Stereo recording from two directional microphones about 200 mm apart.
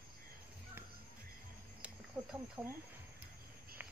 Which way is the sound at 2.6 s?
10° right (ahead or behind).